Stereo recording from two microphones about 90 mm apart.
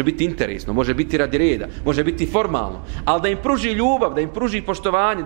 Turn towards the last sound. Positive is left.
turn(degrees=-15)  # may be behind; listen again after turning